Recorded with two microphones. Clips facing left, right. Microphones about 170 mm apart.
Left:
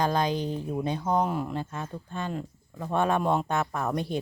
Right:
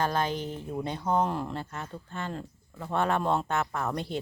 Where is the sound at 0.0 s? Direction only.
15° left (ahead or behind).